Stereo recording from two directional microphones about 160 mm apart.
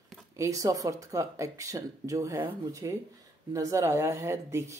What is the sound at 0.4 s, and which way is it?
Speech, 20° right (ahead or behind).